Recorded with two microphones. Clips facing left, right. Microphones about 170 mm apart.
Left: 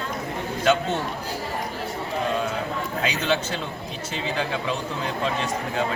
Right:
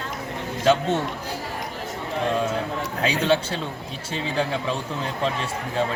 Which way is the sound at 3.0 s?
30° right (ahead or behind).